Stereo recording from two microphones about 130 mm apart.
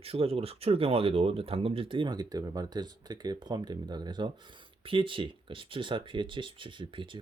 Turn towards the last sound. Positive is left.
turn(degrees=-40)  # may be behind; listen again after turning